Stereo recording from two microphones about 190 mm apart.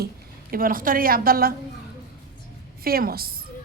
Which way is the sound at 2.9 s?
50° right (ahead or behind).